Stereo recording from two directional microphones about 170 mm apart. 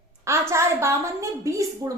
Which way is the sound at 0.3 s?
15° right (ahead or behind).